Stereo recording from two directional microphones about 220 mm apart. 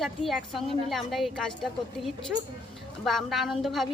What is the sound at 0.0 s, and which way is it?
A woman's voice, centre (ahead or behind).